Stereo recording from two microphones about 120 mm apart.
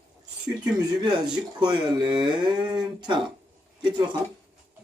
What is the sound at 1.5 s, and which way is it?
Speech, 35° right (ahead or behind).